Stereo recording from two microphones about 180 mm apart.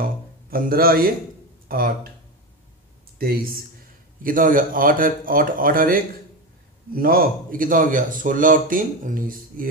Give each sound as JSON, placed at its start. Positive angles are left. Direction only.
{"t": 0.0, "sound": "speech", "side_deg": -55}
{"t": 3.2, "sound": "a man's voice", "side_deg": -55}